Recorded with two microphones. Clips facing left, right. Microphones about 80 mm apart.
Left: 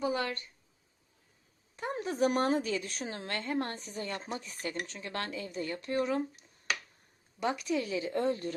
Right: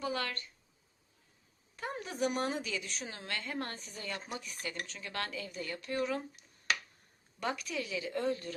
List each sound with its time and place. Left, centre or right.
0.0 s speech: left
1.7 s a woman's voice: left